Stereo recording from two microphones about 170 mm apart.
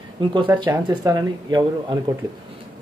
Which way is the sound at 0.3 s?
25° right (ahead or behind).